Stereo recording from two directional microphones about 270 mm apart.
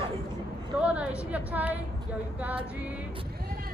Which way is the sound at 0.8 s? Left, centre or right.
Centre.